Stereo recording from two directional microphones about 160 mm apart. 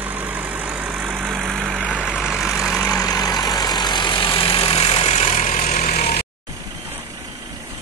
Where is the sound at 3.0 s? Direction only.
25° left (ahead or behind); by 6.2 s 70° left (ahead or behind).